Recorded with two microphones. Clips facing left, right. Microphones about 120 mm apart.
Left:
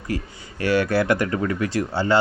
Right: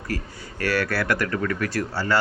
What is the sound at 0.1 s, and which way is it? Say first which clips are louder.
Speech: left 3 dB; 20° left (ahead or behind).